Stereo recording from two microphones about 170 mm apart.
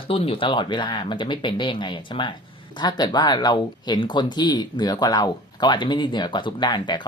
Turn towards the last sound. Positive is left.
turn(degrees=25)  # may be behind; listen again after turning